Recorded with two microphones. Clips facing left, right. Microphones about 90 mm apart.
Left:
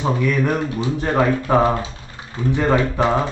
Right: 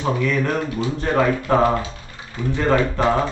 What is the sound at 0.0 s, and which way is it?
Speech, 10° left (ahead or behind).